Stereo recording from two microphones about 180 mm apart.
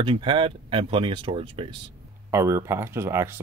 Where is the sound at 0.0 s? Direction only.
30° right (ahead or behind).